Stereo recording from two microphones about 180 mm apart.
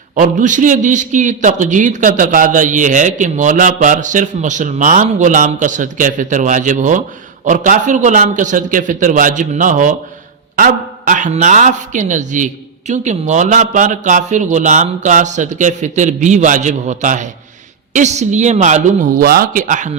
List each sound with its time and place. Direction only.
0.2 s a man's voice: 45° right (ahead or behind)